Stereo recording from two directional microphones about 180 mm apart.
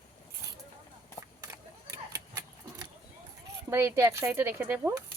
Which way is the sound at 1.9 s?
20° right (ahead or behind).